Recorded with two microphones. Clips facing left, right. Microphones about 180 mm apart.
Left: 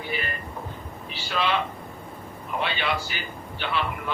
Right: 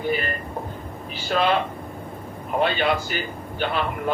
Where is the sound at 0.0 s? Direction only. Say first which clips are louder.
Right 7 dB; 45° right (ahead or behind).